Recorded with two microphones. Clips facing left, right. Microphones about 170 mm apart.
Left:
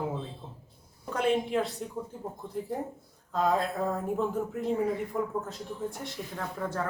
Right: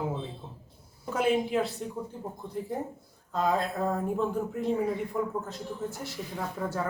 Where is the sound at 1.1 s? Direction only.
5° right (ahead or behind).